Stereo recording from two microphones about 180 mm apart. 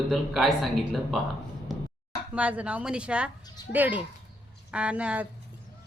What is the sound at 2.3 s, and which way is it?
A woman's voice, 10° right (ahead or behind).